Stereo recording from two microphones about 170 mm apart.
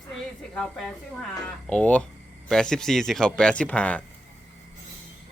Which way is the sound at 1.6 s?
5° left (ahead or behind).